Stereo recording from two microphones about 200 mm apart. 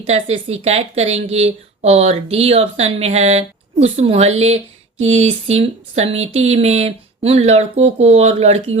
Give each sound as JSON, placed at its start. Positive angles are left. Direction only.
{"t": 0.0, "sound": "speech", "side_deg": -30}